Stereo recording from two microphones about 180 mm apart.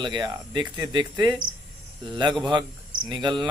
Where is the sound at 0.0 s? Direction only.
25° right (ahead or behind).